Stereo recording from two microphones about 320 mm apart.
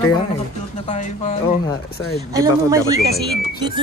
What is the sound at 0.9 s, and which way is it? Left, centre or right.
Speech, centre.